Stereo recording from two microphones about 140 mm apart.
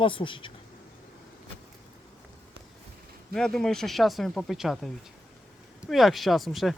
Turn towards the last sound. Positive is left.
turn(degrees=0)  # may be behind; listen again after turning